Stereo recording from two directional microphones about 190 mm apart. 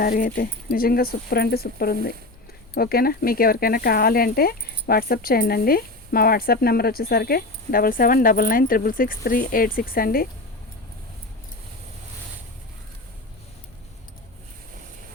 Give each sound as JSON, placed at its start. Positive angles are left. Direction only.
{"t": 0.0, "sound": "speech", "side_deg": 50}